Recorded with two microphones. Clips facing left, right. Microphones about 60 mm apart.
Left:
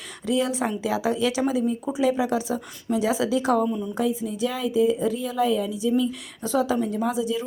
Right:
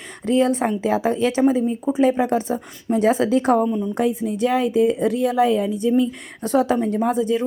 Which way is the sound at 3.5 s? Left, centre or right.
Right.